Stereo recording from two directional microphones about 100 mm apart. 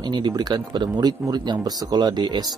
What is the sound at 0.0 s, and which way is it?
Speech, 45° right (ahead or behind).